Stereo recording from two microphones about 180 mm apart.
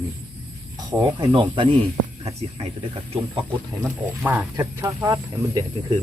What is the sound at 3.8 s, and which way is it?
Speech, 10° right (ahead or behind).